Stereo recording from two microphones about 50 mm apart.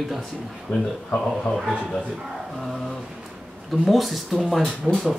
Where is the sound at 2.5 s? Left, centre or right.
Centre.